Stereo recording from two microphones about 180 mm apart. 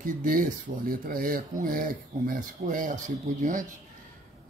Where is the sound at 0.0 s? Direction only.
50° right (ahead or behind).